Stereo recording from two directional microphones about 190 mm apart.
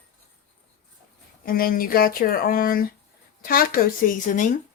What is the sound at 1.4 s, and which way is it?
Speech, 50° left (ahead or behind).